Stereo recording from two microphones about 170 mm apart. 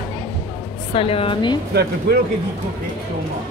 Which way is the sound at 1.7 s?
70° right (ahead or behind).